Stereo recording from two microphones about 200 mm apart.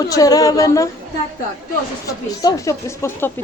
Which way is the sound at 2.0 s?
15° left (ahead or behind).